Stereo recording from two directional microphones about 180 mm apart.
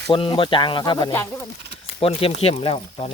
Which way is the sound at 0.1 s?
25° left (ahead or behind).